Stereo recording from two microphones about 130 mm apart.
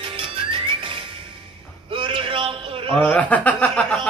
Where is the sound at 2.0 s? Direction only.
40° right (ahead or behind).